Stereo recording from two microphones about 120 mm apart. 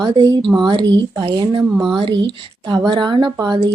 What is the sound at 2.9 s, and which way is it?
Speech, 40° right (ahead or behind).